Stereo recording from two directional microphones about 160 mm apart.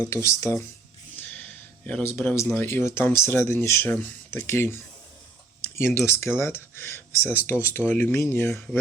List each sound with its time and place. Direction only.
0.0 s speech: 15° left (ahead or behind)